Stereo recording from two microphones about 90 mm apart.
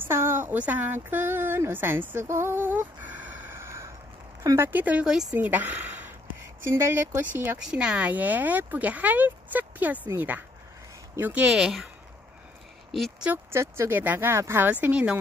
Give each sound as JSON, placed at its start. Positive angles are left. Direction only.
{"t": 0.0, "sound": "speech", "side_deg": -30}
{"t": 2.2, "sound": "a sound", "side_deg": -30}
{"t": 4.6, "sound": "speech", "side_deg": -20}
{"t": 5.0, "sound": "speech", "side_deg": -5}
{"t": 5.3, "sound": "speech", "side_deg": -20}
{"t": 7.7, "sound": "speech", "side_deg": -10}
{"t": 11.5, "sound": "speech", "side_deg": -5}
{"t": 13.5, "sound": "speech", "side_deg": -30}